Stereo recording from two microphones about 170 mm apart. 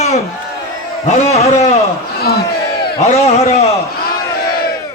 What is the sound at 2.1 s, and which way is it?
Speech, 65° left (ahead or behind).